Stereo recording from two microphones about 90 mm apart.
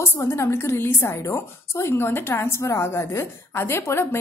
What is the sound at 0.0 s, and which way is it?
A woman's voice, 25° left (ahead or behind).